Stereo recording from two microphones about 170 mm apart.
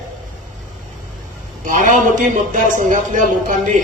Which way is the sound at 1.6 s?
50° right (ahead or behind).